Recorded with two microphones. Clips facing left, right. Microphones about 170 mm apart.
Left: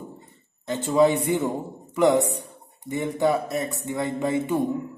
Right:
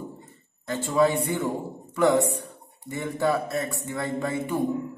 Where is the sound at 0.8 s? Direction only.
20° left (ahead or behind).